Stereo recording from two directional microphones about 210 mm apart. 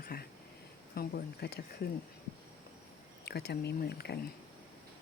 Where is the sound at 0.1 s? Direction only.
45° left (ahead or behind).